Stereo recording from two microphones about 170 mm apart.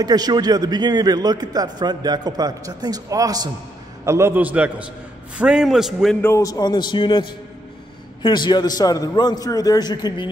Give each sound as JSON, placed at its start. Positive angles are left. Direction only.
{"t": 0.0, "sound": "a man's voice", "side_deg": -25}
{"t": 6.2, "sound": "a man's voice", "side_deg": 20}